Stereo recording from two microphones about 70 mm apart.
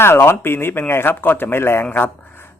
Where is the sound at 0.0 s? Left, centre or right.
Left.